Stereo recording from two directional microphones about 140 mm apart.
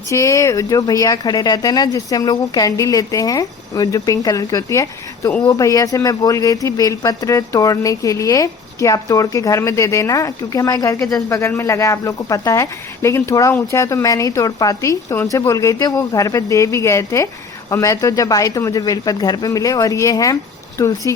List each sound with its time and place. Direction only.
0.1 s speech: 20° left (ahead or behind)